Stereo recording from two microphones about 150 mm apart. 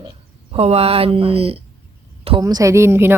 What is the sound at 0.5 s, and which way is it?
Speech, 40° right (ahead or behind).